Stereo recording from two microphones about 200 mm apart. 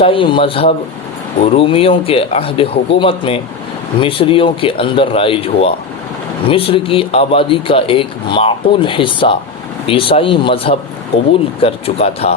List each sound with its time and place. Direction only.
0.0 s speech: 25° left (ahead or behind)